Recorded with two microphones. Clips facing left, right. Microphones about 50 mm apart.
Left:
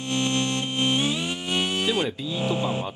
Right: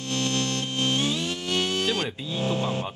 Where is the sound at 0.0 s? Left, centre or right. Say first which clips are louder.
Left 2 dB; left.